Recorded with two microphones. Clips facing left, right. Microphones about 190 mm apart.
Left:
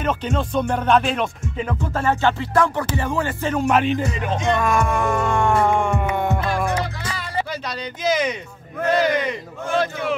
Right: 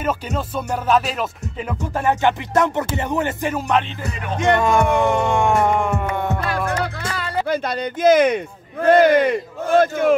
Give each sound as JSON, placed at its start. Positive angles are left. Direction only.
{"t": 0.0, "sound": "music", "side_deg": -5}
{"t": 2.0, "sound": "music", "side_deg": -15}
{"t": 3.5, "sound": "music", "side_deg": 0}
{"t": 4.6, "sound": "music", "side_deg": -25}
{"t": 5.7, "sound": "music", "side_deg": -5}
{"t": 7.0, "sound": "music", "side_deg": -55}
{"t": 8.8, "sound": "speech", "side_deg": -55}